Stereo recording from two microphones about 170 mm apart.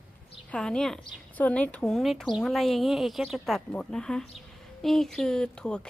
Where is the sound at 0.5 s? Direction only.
5° left (ahead or behind).